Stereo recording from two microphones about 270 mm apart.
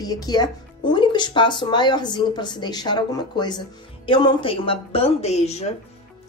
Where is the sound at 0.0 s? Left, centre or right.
Centre.